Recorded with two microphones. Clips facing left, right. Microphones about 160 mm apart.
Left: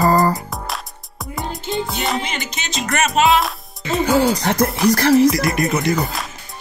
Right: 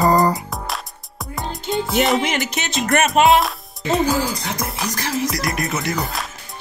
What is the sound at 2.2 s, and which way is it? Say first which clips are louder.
Music: right 5 dB; 65° right (ahead or behind).